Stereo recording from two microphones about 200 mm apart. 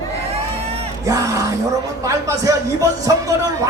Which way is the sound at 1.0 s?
15° right (ahead or behind).